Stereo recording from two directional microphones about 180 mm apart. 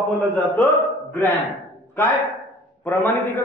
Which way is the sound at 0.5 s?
10° left (ahead or behind).